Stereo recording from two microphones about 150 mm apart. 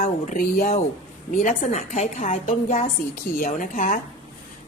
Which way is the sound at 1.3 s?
55° left (ahead or behind).